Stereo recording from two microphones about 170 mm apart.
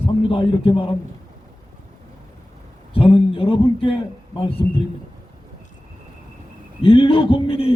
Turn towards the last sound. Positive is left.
turn(degrees=35)  # may be behind; listen again after turning